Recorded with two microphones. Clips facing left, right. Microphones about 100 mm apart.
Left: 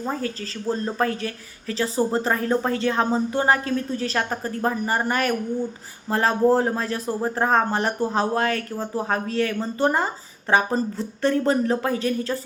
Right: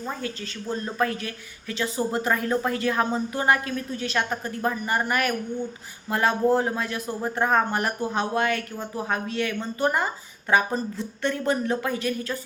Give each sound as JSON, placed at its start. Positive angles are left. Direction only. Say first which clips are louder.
{"t": 0.0, "sound": "speech", "louder": "left 4 dB", "side_deg": 35}